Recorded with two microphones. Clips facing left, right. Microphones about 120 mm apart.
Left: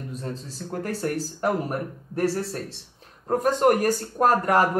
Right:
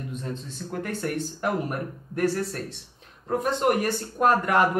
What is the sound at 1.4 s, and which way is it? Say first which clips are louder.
Speech: left 3 dB; 35° left (ahead or behind).